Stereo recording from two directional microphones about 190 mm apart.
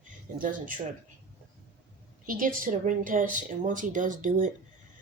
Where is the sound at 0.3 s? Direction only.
45° right (ahead or behind).